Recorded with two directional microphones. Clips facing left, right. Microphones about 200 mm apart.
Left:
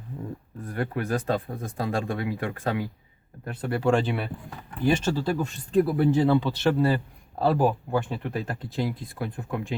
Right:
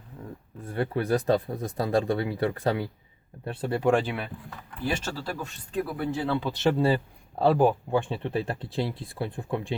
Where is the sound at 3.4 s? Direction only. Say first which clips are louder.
Even; 25° right (ahead or behind).